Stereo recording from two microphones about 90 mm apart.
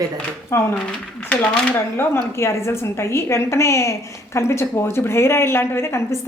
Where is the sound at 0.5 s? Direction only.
30° left (ahead or behind).